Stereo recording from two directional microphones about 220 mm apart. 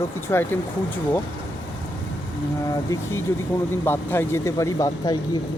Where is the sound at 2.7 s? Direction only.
15° left (ahead or behind).